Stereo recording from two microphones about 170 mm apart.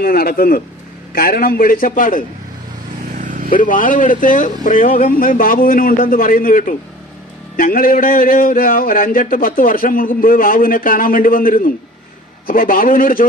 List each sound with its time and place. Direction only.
0.0 s a man's voice: 60° left (ahead or behind)
3.2 s vehicle: 50° right (ahead or behind)
3.4 s a man's voice: 50° left (ahead or behind)